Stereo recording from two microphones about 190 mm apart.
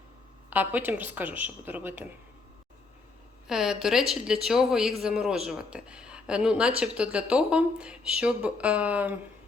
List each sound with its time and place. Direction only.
0.5 s speech: 10° right (ahead or behind)
3.4 s speech: 5° right (ahead or behind)